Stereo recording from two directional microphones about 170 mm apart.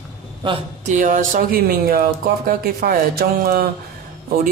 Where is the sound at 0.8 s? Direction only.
50° right (ahead or behind).